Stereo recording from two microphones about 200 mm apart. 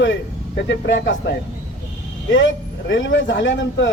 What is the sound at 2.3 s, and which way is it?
A man's voice, 65° left (ahead or behind).